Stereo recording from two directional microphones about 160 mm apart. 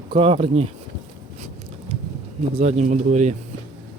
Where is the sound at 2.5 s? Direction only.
45° right (ahead or behind).